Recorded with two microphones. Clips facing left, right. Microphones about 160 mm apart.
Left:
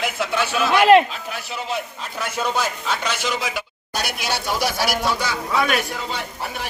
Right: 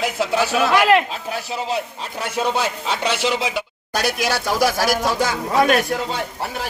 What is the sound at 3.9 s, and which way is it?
Speech, 45° right (ahead or behind).